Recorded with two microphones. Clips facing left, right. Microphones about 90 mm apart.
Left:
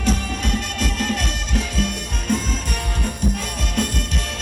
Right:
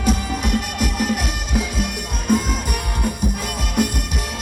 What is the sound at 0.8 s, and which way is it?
Music, 15° right (ahead or behind).